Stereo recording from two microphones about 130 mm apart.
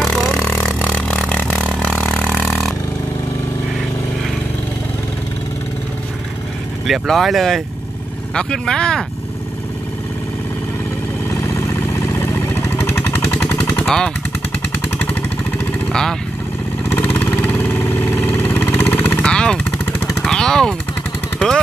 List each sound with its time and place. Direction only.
0.0 s a sound: centre (ahead or behind)
0.4 s a sound: 15° left (ahead or behind)
1.3 s vehicle: 10° left (ahead or behind)
6.9 s speech: centre (ahead or behind)
11.4 s vehicle: 20° left (ahead or behind)
13.8 s speech: 5° left (ahead or behind)
15.0 s vehicle: 10° left (ahead or behind)